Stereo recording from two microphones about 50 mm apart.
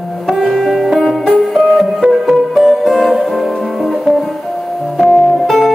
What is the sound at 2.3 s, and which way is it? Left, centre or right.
Music, centre.